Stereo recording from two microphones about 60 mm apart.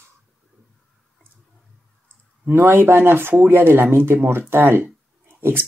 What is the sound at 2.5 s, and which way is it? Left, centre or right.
Speech, right.